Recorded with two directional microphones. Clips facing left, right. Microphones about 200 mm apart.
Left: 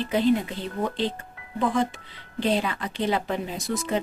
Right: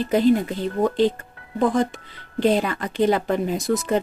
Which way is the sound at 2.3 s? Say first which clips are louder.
Right 5 dB; 45° right (ahead or behind).